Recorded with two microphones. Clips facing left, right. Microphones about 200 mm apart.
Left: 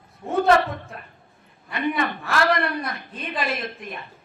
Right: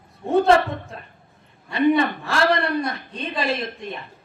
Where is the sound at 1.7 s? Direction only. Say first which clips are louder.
Right 7 dB; 30° right (ahead or behind).